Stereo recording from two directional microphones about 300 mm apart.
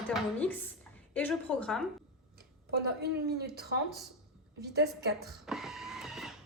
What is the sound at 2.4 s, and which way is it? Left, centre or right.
A woman's voice, right.